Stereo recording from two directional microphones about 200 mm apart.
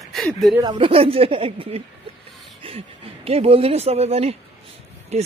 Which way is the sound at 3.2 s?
30° right (ahead or behind).